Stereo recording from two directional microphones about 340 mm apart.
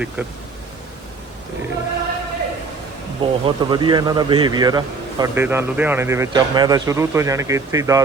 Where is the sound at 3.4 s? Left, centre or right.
Centre.